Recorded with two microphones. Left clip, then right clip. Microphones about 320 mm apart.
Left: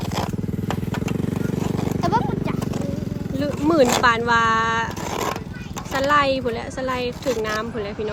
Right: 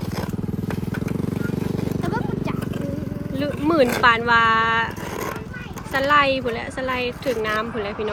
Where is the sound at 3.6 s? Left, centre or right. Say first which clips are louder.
Left 1 dB; centre.